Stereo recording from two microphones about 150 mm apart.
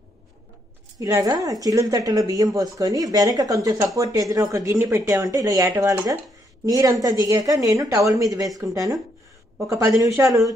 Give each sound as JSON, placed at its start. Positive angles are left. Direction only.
{"t": 0.9, "sound": "speech", "side_deg": -25}